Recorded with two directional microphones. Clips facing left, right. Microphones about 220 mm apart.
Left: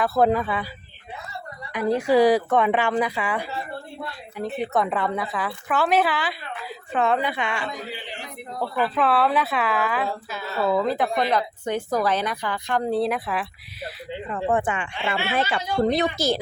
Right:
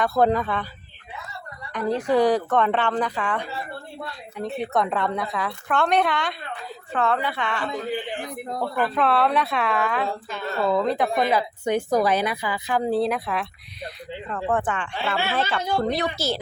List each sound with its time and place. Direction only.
0.0 s a woman's voice: centre (ahead or behind)
1.7 s a woman's voice: 10° left (ahead or behind)
6.9 s a woman's voice: 15° left (ahead or behind)
7.9 s a man's voice: 50° right (ahead or behind)
9.0 s a woman's voice: centre (ahead or behind)